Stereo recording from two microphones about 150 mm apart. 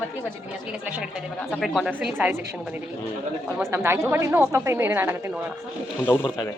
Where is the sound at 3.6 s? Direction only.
15° right (ahead or behind).